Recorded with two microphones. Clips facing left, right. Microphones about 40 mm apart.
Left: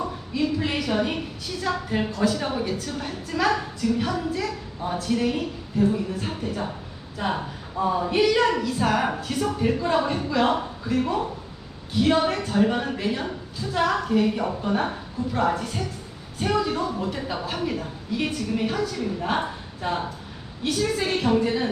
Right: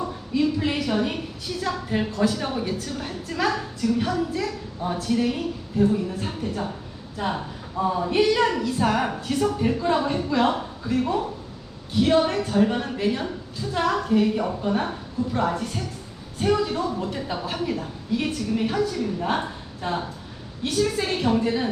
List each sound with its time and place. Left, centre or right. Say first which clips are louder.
0.0 s a woman's voice: right 2 dB; centre